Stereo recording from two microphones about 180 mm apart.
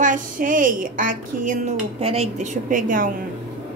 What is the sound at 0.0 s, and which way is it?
A woman's voice, 45° right (ahead or behind).